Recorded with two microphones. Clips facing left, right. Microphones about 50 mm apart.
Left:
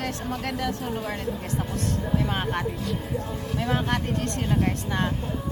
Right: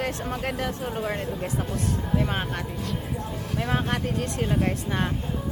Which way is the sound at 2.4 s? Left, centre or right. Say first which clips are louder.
Left 3 dB; centre.